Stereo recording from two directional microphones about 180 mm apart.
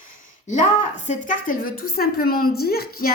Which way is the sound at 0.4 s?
40° left (ahead or behind).